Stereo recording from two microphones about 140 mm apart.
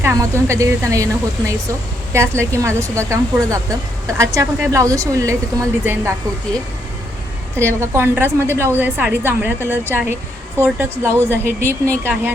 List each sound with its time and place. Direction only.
0.0 s speech: 20° right (ahead or behind)
7.5 s a woman's voice: 20° right (ahead or behind)